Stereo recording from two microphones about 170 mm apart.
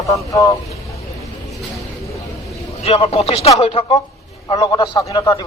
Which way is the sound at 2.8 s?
35° left (ahead or behind).